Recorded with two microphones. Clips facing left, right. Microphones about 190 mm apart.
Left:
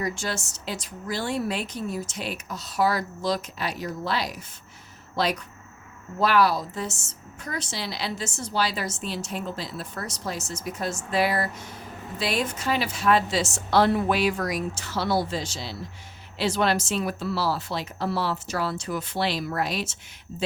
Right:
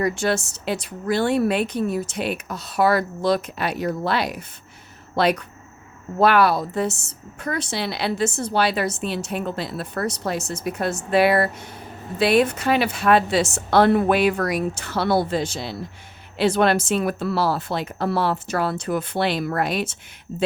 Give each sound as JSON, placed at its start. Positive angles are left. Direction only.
{"t": 0.0, "sound": "speech", "side_deg": -60}